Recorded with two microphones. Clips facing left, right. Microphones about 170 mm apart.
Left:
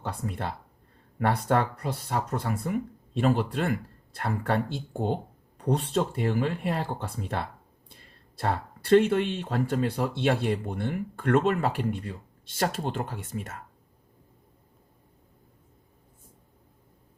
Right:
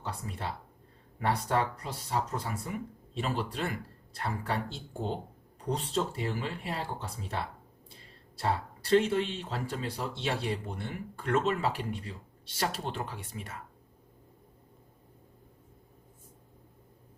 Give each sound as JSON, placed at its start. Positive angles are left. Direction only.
{"t": 0.0, "sound": "speech", "side_deg": 55}